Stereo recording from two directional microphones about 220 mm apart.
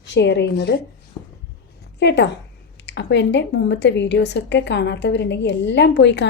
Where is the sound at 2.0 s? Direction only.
50° left (ahead or behind).